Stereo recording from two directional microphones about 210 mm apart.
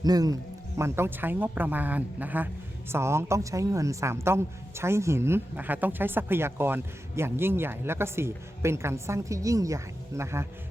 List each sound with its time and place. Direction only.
0.0 s a woman's voice: 20° right (ahead or behind)